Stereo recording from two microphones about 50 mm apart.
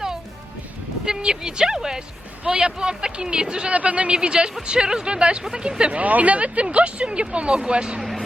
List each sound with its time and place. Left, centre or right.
1.0 s speech: centre
6.0 s speech: right